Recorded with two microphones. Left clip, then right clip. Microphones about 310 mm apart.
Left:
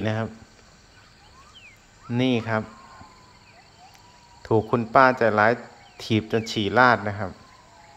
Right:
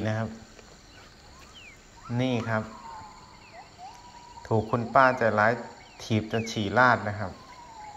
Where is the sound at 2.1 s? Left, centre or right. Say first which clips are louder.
Left 4 dB; centre.